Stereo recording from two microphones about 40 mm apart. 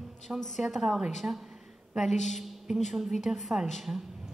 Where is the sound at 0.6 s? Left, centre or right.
Centre.